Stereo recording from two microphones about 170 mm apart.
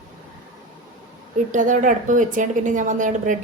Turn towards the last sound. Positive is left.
turn(degrees=-50)  # may be behind; listen again after turning